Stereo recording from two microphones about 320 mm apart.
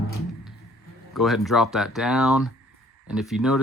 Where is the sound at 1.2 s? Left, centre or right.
Centre.